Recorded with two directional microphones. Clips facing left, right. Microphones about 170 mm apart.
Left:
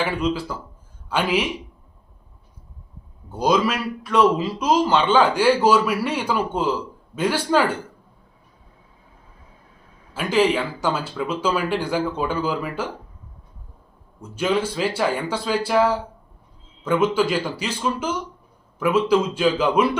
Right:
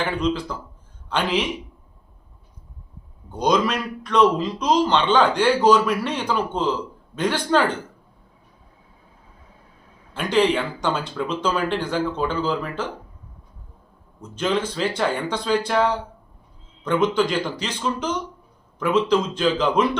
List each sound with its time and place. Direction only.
0.0 s a man's voice: 5° left (ahead or behind)
3.2 s a man's voice: 5° left (ahead or behind)
10.2 s a man's voice: 5° left (ahead or behind)
14.2 s a man's voice: 10° left (ahead or behind)